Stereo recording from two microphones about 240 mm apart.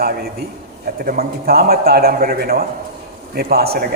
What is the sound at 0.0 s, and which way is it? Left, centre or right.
A man's voice, right.